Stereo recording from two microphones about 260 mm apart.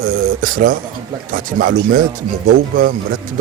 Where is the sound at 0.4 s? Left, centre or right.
Right.